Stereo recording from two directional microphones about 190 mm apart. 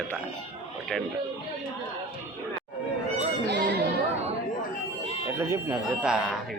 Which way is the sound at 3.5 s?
60° right (ahead or behind).